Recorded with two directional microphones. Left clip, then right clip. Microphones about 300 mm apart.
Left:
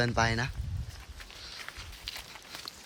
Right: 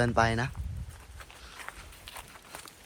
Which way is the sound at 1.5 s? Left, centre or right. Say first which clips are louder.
Left 1 dB; centre.